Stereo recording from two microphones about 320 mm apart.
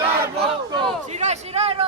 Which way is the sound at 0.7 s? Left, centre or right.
Right.